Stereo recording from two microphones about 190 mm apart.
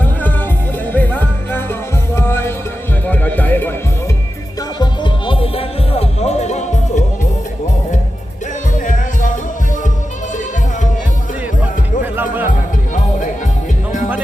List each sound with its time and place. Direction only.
0.0 s music: 10° left (ahead or behind)
4.8 s music: 25° left (ahead or behind)
8.7 s music: 45° left (ahead or behind)
12.1 s music: 10° right (ahead or behind)
12.9 s music: 40° left (ahead or behind)